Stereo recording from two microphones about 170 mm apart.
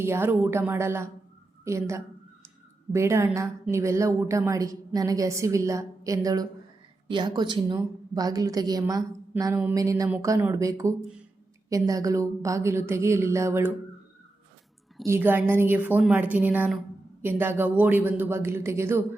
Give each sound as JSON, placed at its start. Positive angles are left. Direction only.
{"t": 0.0, "sound": "a woman's voice", "side_deg": -15}
{"t": 15.0, "sound": "a woman's voice", "side_deg": -15}